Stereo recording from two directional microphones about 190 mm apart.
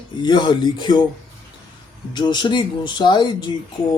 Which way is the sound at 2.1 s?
25° left (ahead or behind).